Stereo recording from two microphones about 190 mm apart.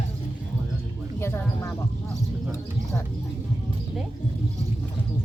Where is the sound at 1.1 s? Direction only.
15° left (ahead or behind).